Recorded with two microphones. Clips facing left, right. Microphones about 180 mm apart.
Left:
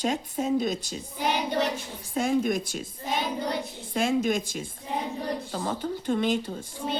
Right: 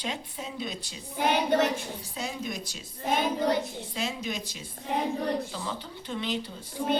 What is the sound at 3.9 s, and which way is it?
A woman's voice, 50° left (ahead or behind).